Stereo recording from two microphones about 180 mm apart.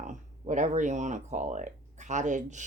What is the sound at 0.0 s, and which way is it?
Speech, 40° right (ahead or behind).